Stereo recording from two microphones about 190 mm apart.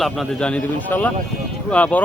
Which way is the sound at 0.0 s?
5° left (ahead or behind).